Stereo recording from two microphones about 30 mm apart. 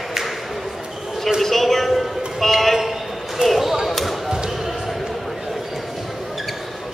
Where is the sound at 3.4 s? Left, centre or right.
Right.